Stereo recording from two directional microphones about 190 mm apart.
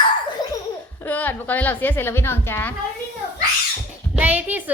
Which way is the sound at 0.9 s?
10° left (ahead or behind).